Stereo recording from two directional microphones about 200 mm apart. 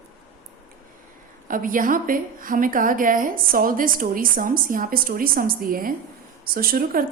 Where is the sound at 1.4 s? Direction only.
45° right (ahead or behind).